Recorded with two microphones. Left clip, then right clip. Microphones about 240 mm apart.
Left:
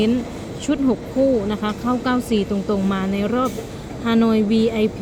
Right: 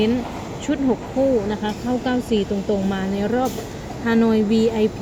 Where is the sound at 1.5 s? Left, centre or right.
Centre.